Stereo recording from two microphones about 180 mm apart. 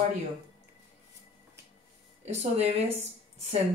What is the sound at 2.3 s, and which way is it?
Speech, 35° right (ahead or behind).